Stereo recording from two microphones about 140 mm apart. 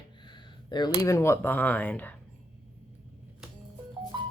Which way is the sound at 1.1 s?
20° left (ahead or behind).